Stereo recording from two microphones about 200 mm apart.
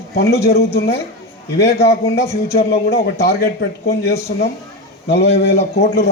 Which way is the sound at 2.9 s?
50° left (ahead or behind).